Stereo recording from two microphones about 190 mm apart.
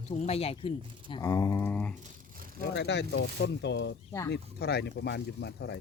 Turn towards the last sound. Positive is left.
turn(degrees=65)  # may be behind; listen again after turning